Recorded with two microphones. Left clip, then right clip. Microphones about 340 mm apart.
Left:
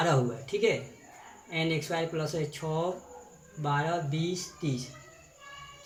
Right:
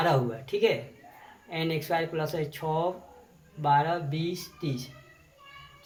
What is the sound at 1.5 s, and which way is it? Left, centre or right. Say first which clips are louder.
Speech: right 2 dB; centre.